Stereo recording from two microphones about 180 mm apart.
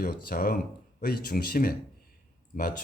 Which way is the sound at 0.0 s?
55° left (ahead or behind).